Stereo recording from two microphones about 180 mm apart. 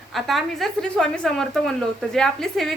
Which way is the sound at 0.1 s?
Centre (ahead or behind).